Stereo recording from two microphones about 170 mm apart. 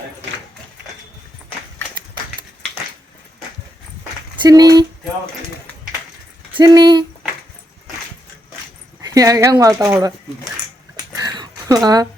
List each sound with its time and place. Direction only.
4.4 s speech: 20° right (ahead or behind)
6.5 s speech: 25° right (ahead or behind)
9.0 s speech: 20° right (ahead or behind)
11.2 s a sound: 20° right (ahead or behind)